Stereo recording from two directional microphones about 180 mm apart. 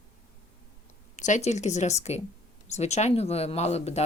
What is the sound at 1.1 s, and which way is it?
Speech, 45° left (ahead or behind).